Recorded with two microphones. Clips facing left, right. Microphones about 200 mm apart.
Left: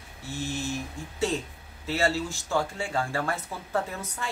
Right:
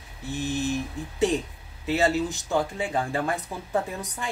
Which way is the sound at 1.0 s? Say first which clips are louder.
Right 4 dB; 20° right (ahead or behind).